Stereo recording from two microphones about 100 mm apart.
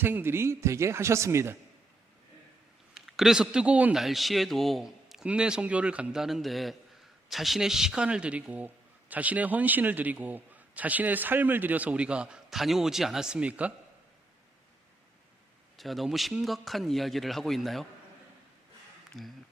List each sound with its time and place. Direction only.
0.0 s a man's voice: 20° right (ahead or behind)
2.9 s a man's voice: 5° right (ahead or behind)
3.9 s a man's voice: centre (ahead or behind)
15.8 s a man's voice: centre (ahead or behind)
19.1 s a man's voice: centre (ahead or behind)